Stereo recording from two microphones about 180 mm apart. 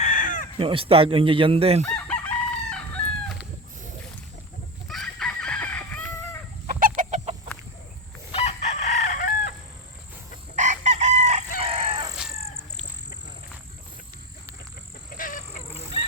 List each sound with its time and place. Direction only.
0.0 s caw: 45° left (ahead or behind)
0.6 s speech: 30° right (ahead or behind)
1.8 s chicken: 5° left (ahead or behind)
4.9 s chicken: 5° left (ahead or behind)
6.7 s chicken: 50° right (ahead or behind)
8.3 s chicken: 35° left (ahead or behind)
10.5 s chicken: 40° right (ahead or behind)
15.1 s vehicle: 50° left (ahead or behind)
15.9 s goose: 35° left (ahead or behind)